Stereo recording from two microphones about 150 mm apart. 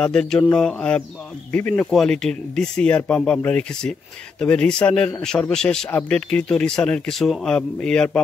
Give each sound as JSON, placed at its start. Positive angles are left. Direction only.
{"t": 0.0, "sound": "speech", "side_deg": 5}